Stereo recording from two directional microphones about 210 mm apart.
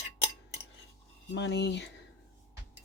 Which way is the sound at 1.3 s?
55° left (ahead or behind).